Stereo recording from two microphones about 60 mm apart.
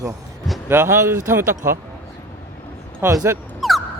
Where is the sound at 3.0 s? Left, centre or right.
Right.